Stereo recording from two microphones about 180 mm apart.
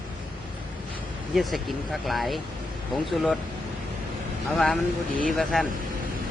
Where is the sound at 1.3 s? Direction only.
Centre (ahead or behind).